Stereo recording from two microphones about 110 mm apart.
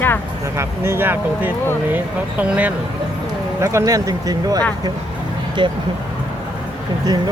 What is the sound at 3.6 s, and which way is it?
Speech, 25° right (ahead or behind).